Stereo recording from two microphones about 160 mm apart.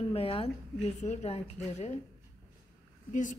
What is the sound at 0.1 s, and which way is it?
A woman's voice, 35° left (ahead or behind).